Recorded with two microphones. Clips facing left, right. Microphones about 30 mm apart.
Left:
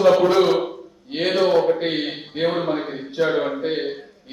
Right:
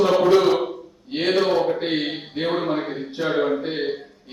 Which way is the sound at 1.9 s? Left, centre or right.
Centre.